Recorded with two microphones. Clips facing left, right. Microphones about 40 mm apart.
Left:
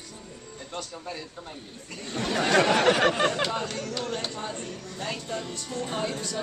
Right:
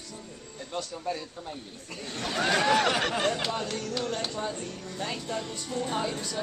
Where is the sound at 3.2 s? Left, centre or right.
Centre.